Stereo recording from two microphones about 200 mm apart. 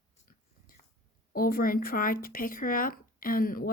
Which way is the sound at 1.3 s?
45° left (ahead or behind).